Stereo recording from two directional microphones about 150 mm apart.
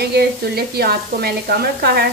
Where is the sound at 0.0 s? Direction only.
90° right.